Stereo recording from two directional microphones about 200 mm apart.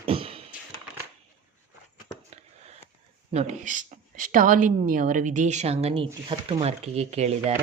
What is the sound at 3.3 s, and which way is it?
A woman's voice, 35° right (ahead or behind).